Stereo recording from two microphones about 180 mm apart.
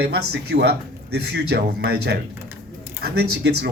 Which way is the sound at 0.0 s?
65° right (ahead or behind).